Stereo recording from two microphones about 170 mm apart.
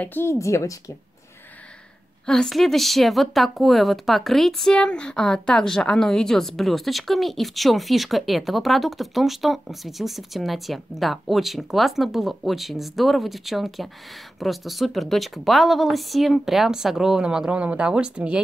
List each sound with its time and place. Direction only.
0.0 s a woman's voice: 10° left (ahead or behind)
2.2 s speech: 5° left (ahead or behind)